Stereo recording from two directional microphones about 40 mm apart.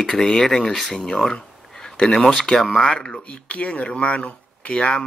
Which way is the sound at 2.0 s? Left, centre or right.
Centre.